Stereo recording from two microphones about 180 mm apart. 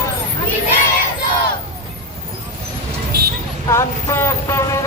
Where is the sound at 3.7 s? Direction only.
15° left (ahead or behind).